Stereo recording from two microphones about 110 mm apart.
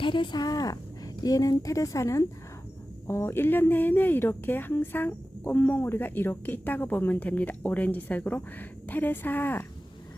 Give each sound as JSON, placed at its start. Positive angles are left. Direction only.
{"t": 0.0, "sound": "speech", "side_deg": 45}